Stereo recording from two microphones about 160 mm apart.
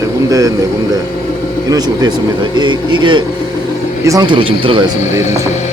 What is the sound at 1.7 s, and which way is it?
Speech, 25° right (ahead or behind).